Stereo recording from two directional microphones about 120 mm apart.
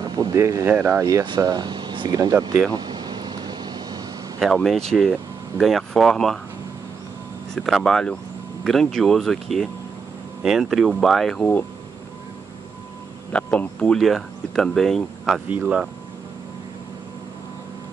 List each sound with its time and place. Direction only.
0.0 s speech: 35° right (ahead or behind)
1.2 s speech: 35° right (ahead or behind)
2.7 s vehicle: 35° right (ahead or behind)
4.4 s speech: 5° left (ahead or behind)
7.5 s speech: centre (ahead or behind)
13.3 s speech: 10° left (ahead or behind)
15.4 s speech: 10° right (ahead or behind)